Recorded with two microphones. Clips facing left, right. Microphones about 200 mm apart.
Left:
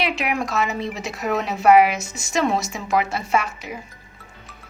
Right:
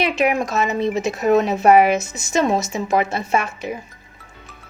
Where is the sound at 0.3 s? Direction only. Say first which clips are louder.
Right 3 dB; 20° right (ahead or behind).